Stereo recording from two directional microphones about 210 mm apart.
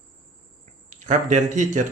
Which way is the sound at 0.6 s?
35° right (ahead or behind).